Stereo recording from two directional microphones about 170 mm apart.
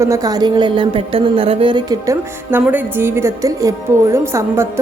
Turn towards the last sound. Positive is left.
turn(degrees=-15)  # may be behind; listen again after turning